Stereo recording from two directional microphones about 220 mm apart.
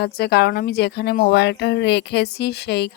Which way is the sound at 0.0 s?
45° left (ahead or behind).